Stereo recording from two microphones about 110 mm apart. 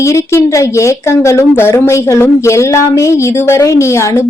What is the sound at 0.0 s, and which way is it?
A woman's voice, 25° left (ahead or behind).